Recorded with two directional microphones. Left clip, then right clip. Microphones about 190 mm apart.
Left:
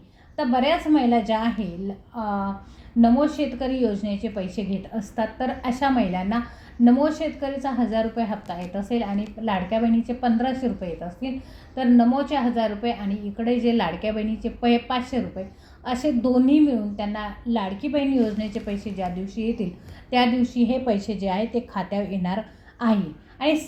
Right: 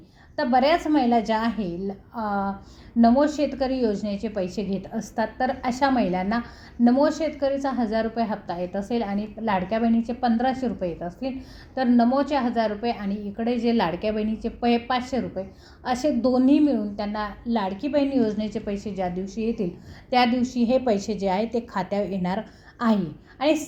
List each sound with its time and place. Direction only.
0.3 s a woman's voice: 40° right (ahead or behind)